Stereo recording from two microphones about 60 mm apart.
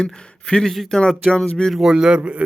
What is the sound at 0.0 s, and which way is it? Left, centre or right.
Speech, centre.